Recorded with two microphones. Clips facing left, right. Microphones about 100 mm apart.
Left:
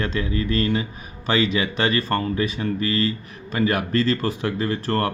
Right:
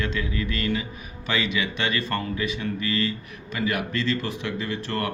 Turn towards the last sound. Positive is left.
turn(degrees=40)  # may be behind; listen again after turning